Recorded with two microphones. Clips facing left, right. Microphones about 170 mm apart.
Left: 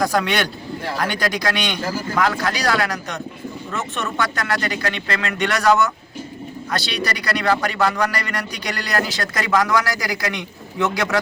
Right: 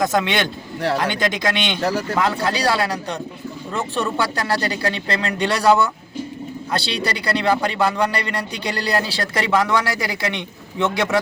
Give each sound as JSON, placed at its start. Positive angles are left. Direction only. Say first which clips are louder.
{"t": 0.0, "sound": "a man's voice", "louder": "even", "side_deg": -20}
{"t": 1.8, "sound": "speech", "louder": "right 4 dB", "side_deg": -70}
{"t": 2.1, "sound": "a man's voice", "louder": "even", "side_deg": -25}